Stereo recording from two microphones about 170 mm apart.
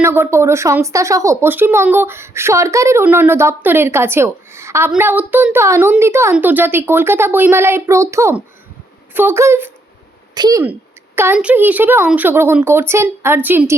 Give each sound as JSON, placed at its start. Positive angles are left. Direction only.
{"t": 0.0, "sound": "a woman's voice", "side_deg": -15}
{"t": 10.6, "sound": "speech", "side_deg": -10}